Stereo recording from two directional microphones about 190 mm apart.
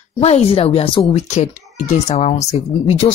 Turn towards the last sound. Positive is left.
turn(degrees=30)  # may be behind; listen again after turning